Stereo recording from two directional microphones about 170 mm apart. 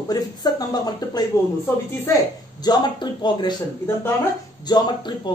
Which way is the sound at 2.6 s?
25° left (ahead or behind).